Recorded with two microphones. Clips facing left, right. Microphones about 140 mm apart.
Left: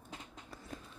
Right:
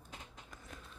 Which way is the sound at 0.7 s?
30° left (ahead or behind).